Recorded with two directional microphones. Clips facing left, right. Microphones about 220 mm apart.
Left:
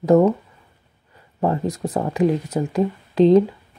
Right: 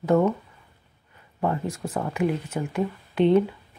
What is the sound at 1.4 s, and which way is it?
Speech, 35° left (ahead or behind).